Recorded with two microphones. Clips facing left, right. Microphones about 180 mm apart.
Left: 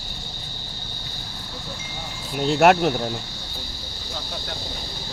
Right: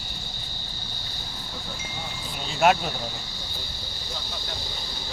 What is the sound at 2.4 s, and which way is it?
Speech, 70° left (ahead or behind).